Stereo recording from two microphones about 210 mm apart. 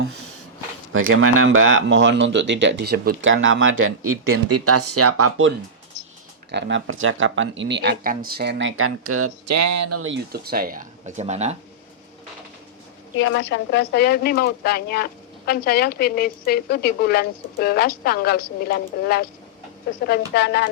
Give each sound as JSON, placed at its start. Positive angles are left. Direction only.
{"t": 0.9, "sound": "speech", "side_deg": -75}
{"t": 3.2, "sound": "speech", "side_deg": -65}
{"t": 6.5, "sound": "speech", "side_deg": -55}
{"t": 9.9, "sound": "speech", "side_deg": -75}
{"t": 10.3, "sound": "speech", "side_deg": -45}
{"t": 13.1, "sound": "a woman's voice", "side_deg": 60}